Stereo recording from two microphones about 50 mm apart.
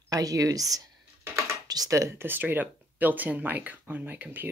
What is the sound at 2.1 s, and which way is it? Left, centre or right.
Speech, right.